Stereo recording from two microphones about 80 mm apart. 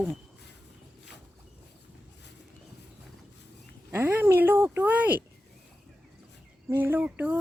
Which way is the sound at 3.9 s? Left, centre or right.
Right.